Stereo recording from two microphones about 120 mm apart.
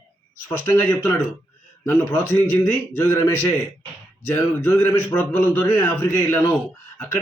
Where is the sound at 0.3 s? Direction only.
20° left (ahead or behind).